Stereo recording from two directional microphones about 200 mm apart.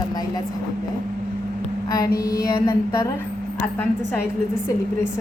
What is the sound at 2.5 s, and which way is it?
Speech, 15° left (ahead or behind).